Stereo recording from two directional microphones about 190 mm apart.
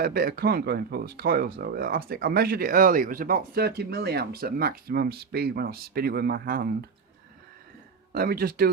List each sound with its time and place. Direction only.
0.0 s speech: 50° right (ahead or behind)
8.1 s speech: 55° right (ahead or behind)